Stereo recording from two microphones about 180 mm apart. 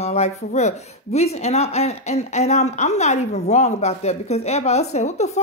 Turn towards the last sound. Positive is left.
turn(degrees=40)  # may be behind; listen again after turning